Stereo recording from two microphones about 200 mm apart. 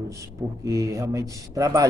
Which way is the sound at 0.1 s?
15° right (ahead or behind).